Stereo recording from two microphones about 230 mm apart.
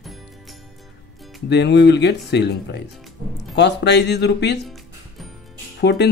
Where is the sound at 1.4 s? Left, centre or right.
Left.